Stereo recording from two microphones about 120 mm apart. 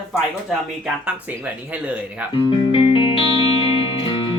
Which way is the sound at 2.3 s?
45° left (ahead or behind).